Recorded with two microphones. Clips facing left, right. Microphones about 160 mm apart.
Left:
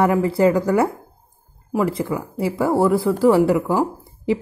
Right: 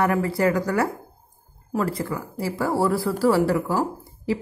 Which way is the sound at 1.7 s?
15° left (ahead or behind).